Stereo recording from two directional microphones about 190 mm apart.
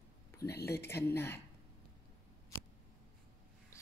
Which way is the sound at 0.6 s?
15° left (ahead or behind).